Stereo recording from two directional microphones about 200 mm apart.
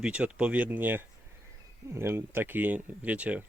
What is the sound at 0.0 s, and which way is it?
Speech, 5° right (ahead or behind).